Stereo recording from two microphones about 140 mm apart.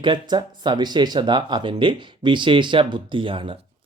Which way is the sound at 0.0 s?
35° right (ahead or behind).